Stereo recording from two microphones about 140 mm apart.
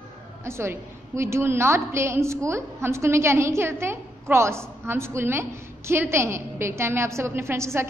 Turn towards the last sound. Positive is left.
turn(degrees=-20)  # may be behind; listen again after turning